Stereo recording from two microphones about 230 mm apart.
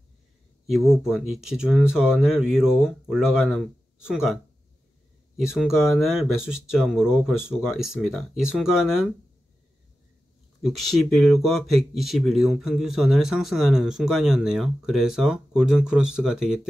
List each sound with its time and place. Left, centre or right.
0.7 s speech: centre
5.4 s speech: centre
10.6 s speech: centre